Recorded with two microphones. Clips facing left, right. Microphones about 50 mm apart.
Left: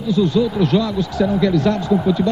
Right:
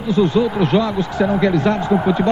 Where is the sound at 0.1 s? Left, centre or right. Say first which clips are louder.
Right 1 dB; right.